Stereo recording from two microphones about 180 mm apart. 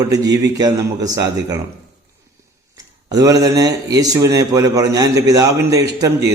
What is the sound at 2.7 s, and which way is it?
Speech, 20° right (ahead or behind).